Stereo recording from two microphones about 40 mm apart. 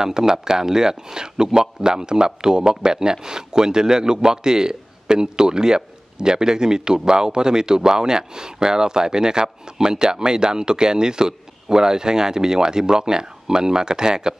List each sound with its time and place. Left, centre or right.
0.0 s speech: centre